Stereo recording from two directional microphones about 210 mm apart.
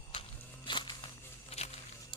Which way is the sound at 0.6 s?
20° left (ahead or behind).